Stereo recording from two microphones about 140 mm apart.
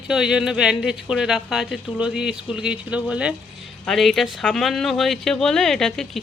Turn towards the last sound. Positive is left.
turn(degrees=5)  # may be behind; listen again after turning